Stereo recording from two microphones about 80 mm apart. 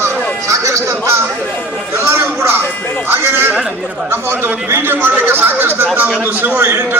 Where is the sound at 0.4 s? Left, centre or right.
Right.